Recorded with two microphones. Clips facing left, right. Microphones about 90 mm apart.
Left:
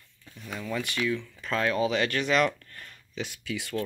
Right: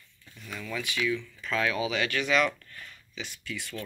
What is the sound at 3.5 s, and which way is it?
Speech, 65° left (ahead or behind).